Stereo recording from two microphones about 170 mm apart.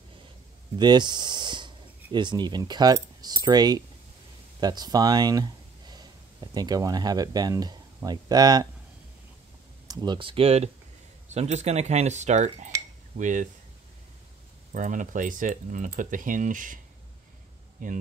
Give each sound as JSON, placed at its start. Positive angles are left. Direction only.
{"t": 0.7, "sound": "speech", "side_deg": -25}
{"t": 9.8, "sound": "speech", "side_deg": -25}
{"t": 14.7, "sound": "speech", "side_deg": -50}